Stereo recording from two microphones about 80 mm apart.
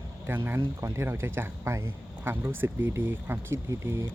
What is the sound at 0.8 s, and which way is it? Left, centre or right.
Speech, right.